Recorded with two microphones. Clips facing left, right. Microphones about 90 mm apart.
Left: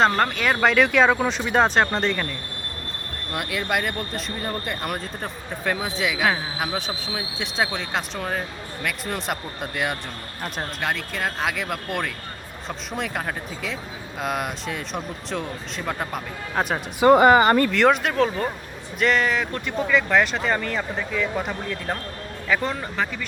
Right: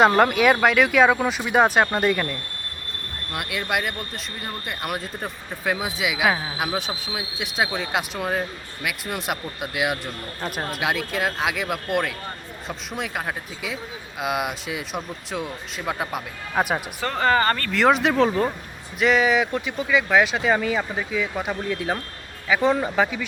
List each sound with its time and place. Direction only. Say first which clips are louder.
0.0 s speech: right 4 dB; 10° right (ahead or behind)
3.3 s speech: left 1 dB; centre (ahead or behind)
17.0 s speech: left 8 dB; 15° left (ahead or behind)
17.7 s speech: even; centre (ahead or behind)